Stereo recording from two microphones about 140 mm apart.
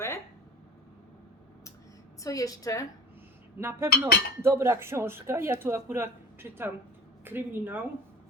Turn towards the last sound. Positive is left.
turn(degrees=-15)  # may be behind; listen again after turning